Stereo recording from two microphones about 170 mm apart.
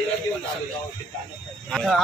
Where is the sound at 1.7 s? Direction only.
Centre (ahead or behind).